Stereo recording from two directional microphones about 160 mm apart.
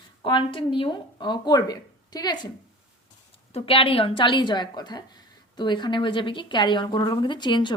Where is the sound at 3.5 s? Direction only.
35° left (ahead or behind).